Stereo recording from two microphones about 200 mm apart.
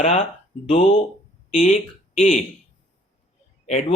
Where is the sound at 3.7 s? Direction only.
35° left (ahead or behind).